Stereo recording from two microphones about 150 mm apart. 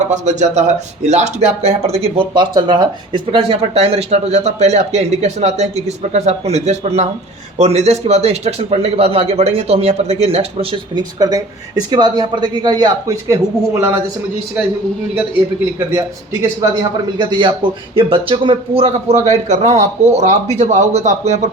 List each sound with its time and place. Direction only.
0.1 s speech: 50° right (ahead or behind)
11.2 s a man's voice: 25° right (ahead or behind)
15.9 s a man's voice: 20° right (ahead or behind); by 21.5 s 50° right (ahead or behind)